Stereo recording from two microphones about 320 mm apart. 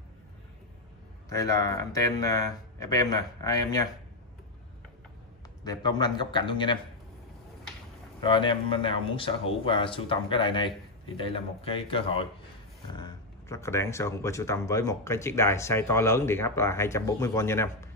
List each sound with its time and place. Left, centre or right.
1.3 s speech: centre
5.6 s speech: centre
8.2 s speech: centre